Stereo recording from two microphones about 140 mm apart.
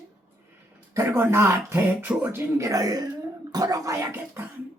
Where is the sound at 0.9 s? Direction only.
20° right (ahead or behind).